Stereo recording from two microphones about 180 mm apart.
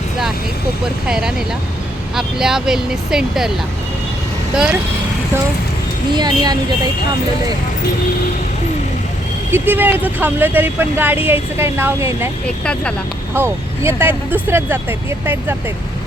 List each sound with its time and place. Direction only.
1.0 s speech: 5° right (ahead or behind)
4.5 s speech: 5° right (ahead or behind)
6.1 s speech: 25° right (ahead or behind)
9.5 s speech: 10° right (ahead or behind)
13.3 s speech: 15° right (ahead or behind)